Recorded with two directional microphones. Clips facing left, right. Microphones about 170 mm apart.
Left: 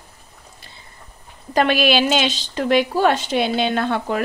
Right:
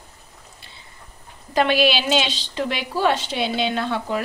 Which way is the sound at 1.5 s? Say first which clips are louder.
Left 2 dB; 50° left (ahead or behind).